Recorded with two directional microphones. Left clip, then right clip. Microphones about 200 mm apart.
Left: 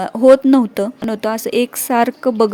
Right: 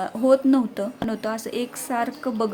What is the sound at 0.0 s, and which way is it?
Speech, 45° left (ahead or behind).